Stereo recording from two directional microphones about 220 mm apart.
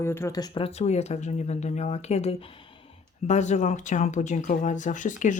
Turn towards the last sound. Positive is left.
turn(degrees=35)  # may be behind; listen again after turning